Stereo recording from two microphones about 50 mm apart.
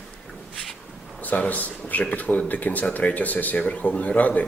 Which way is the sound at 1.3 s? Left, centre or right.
Left.